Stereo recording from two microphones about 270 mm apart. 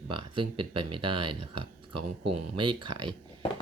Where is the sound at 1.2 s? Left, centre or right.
Right.